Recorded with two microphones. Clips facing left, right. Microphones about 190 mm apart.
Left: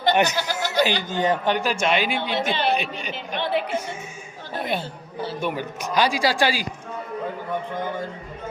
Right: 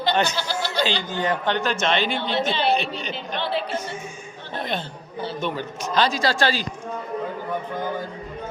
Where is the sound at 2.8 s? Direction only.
10° left (ahead or behind).